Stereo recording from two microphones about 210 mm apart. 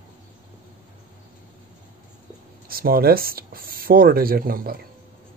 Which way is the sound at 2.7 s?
45° right (ahead or behind).